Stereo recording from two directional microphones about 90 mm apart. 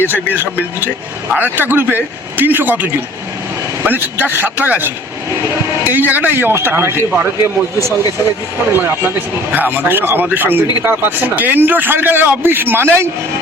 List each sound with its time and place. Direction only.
0.1 s a man's voice: 20° right (ahead or behind)
3.8 s a man's voice: 20° right (ahead or behind)
5.9 s a man's voice: 20° right (ahead or behind)